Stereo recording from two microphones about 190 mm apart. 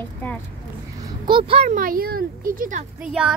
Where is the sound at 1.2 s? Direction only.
25° right (ahead or behind); by 2.8 s 45° right (ahead or behind).